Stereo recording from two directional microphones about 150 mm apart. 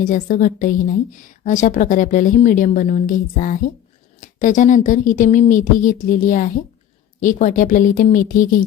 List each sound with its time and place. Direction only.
0.0 s a woman's voice: 60° left (ahead or behind)